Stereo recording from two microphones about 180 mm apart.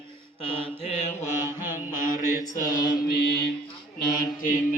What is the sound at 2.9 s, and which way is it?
Mantra, 60° left (ahead or behind).